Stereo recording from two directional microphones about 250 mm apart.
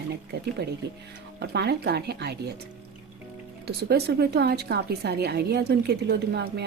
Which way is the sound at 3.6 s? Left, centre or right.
Right.